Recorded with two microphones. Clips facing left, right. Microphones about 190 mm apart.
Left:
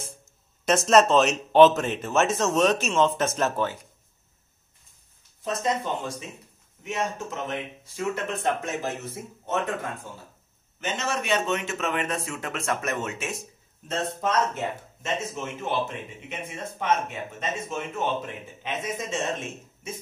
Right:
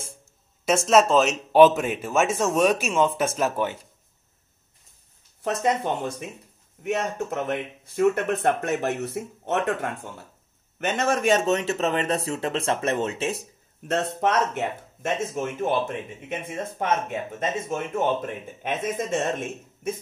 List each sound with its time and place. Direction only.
0.7 s speech: 5° right (ahead or behind)
5.4 s speech: 65° right (ahead or behind)
10.8 s speech: 55° right (ahead or behind); by 13.4 s 30° right (ahead or behind)
13.4 s a man's voice: 70° right (ahead or behind); by 19.1 s 50° right (ahead or behind)